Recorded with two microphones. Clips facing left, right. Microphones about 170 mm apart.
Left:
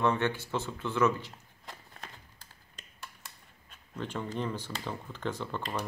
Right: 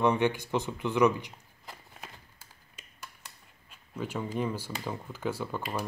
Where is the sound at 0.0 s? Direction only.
15° right (ahead or behind).